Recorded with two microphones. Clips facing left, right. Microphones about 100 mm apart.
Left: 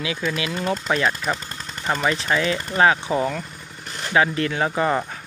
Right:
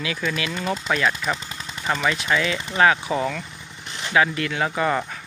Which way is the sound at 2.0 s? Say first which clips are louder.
Left 1 dB; 30° left (ahead or behind).